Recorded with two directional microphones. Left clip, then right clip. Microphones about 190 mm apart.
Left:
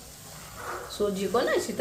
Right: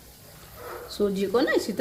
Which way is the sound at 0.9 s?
50° right (ahead or behind).